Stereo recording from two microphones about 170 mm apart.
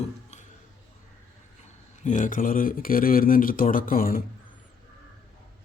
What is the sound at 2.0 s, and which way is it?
Speech, 50° left (ahead or behind).